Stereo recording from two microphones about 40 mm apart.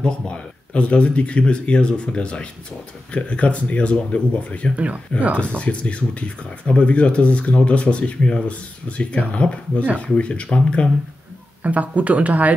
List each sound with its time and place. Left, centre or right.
0.0 s speech: left
4.7 s speech: right
5.6 s speech: left
11.6 s speech: right